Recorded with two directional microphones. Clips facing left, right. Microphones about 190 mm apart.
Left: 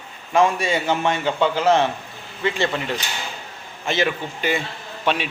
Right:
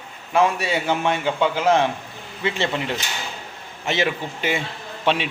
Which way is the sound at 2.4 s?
20° right (ahead or behind).